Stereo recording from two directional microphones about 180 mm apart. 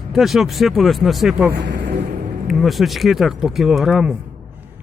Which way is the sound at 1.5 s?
70° right (ahead or behind).